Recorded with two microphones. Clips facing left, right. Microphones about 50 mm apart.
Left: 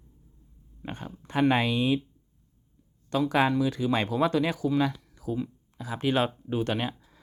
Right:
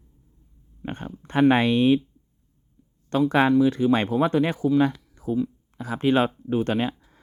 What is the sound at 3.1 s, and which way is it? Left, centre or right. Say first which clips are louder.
Speech: right 5 dB; right.